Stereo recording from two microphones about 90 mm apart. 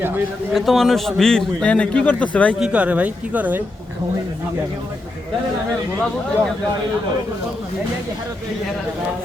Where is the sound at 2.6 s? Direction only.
15° right (ahead or behind).